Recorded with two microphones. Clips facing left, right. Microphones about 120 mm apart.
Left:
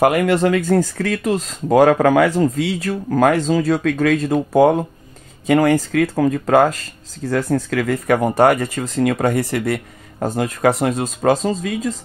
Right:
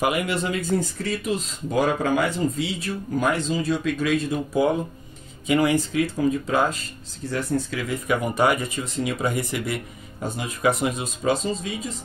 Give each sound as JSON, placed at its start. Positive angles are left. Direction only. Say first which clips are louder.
{"t": 0.0, "sound": "speech", "louder": "left 9 dB", "side_deg": 90}
{"t": 4.6, "sound": "speech", "louder": "left 8 dB", "side_deg": 60}
{"t": 8.4, "sound": "speech", "louder": "left 6 dB", "side_deg": 75}
{"t": 10.2, "sound": "speech", "louder": "left 6 dB", "side_deg": 90}